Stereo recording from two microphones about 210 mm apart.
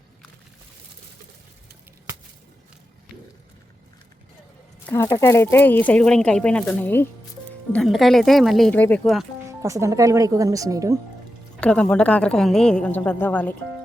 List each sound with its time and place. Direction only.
4.9 s a woman's voice: 10° left (ahead or behind)
9.5 s speech: 15° right (ahead or behind)
11.6 s a woman's voice: 5° left (ahead or behind)